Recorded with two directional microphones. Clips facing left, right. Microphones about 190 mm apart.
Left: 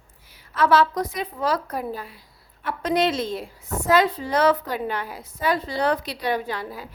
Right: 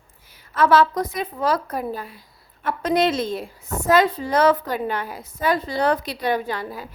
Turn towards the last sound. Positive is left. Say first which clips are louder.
# right 2 dB
turn(degrees=-45)  # may be behind; listen again after turning